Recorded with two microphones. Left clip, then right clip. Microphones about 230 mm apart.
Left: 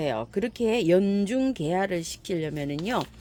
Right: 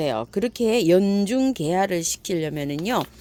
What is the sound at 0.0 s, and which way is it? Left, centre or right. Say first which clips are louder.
Speech: right 4 dB; right.